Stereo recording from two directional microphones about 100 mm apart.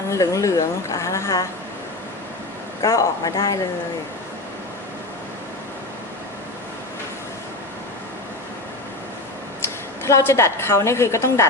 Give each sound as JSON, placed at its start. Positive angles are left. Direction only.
{"t": 0.1, "sound": "speech", "side_deg": 30}
{"t": 2.8, "sound": "speech", "side_deg": 30}
{"t": 10.1, "sound": "a woman's voice", "side_deg": 30}